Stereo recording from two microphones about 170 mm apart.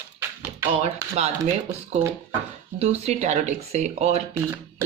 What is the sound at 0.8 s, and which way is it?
Speech, 40° right (ahead or behind).